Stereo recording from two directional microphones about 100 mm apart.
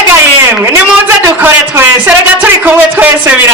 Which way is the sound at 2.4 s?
20° right (ahead or behind).